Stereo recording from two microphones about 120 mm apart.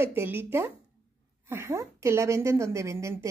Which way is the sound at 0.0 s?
20° right (ahead or behind).